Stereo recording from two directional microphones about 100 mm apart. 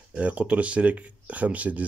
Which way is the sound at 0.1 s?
15° right (ahead or behind).